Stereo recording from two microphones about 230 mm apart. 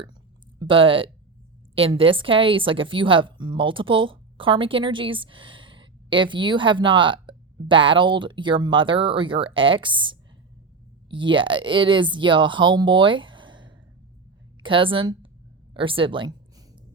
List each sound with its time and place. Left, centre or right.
0.6 s a woman's voice: right